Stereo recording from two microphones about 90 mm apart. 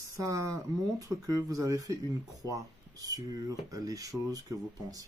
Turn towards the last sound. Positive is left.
turn(degrees=-45)  # may be behind; listen again after turning